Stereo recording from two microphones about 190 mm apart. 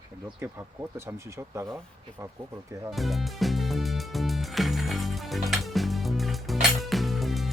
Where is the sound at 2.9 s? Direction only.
Centre (ahead or behind).